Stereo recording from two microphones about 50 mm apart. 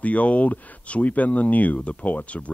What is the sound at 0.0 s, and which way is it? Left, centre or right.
Speech, left.